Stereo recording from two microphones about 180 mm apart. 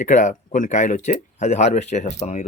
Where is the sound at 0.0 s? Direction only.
45° left (ahead or behind).